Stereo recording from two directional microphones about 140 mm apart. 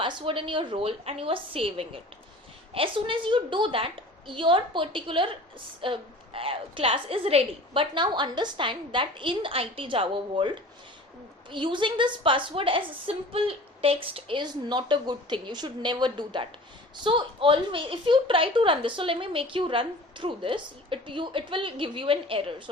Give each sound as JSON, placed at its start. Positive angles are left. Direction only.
{"t": 0.0, "sound": "a woman's voice", "side_deg": -35}
{"t": 11.5, "sound": "a woman's voice", "side_deg": -35}